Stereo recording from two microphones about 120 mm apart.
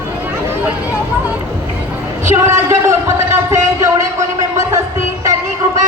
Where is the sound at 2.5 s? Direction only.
20° right (ahead or behind).